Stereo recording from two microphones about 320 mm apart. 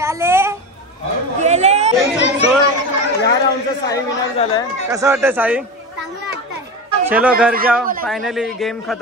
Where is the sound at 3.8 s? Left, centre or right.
Centre.